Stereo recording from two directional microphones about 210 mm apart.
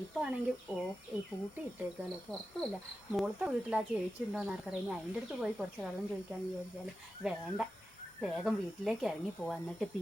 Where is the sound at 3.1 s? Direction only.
5° right (ahead or behind).